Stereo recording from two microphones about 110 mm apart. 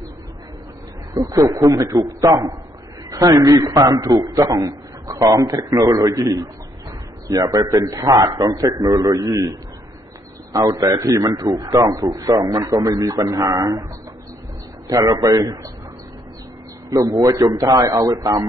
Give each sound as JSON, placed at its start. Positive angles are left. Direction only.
{"t": 1.1, "sound": "a man's voice", "side_deg": -30}
{"t": 15.0, "sound": "a man's voice", "side_deg": -35}
{"t": 16.9, "sound": "a man's voice", "side_deg": -30}